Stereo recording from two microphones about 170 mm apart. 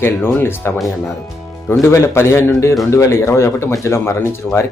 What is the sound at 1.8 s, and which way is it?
Speech, 15° left (ahead or behind).